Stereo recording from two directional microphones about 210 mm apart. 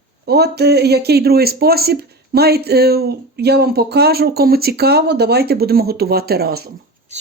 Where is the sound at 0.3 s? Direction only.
50° right (ahead or behind).